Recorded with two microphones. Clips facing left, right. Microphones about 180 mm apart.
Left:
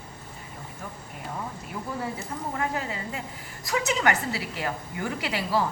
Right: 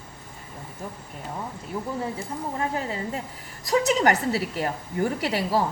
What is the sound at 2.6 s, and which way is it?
A woman's voice, 30° right (ahead or behind).